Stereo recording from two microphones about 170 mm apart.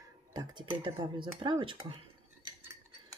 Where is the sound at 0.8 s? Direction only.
30° right (ahead or behind).